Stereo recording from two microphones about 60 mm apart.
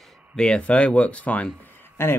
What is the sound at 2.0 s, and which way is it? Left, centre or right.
Speech, left.